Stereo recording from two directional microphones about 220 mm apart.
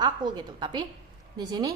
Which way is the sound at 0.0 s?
20° right (ahead or behind).